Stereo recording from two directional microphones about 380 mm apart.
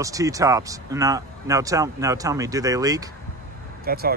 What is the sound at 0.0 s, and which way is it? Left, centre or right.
Speech, centre.